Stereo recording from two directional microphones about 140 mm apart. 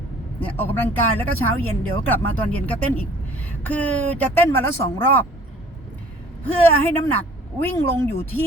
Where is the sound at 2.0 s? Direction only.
10° left (ahead or behind).